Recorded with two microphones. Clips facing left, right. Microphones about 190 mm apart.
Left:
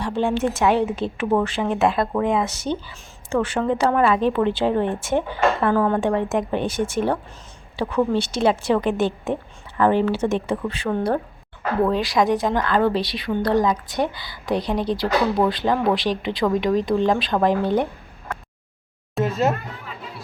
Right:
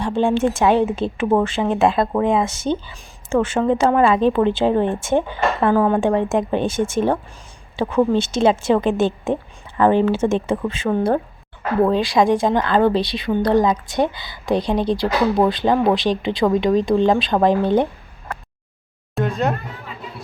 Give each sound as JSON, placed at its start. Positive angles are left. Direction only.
{"t": 0.0, "sound": "speech", "side_deg": -30}
{"t": 6.0, "sound": "speech", "side_deg": -25}
{"t": 19.1, "sound": "a sound", "side_deg": 0}